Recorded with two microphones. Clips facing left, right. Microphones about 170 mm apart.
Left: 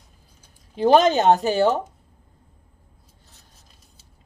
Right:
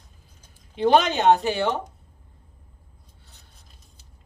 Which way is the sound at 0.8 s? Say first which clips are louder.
Left 3 dB; 40° left (ahead or behind).